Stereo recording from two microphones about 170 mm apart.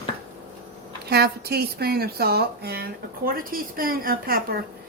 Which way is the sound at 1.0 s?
70° right (ahead or behind).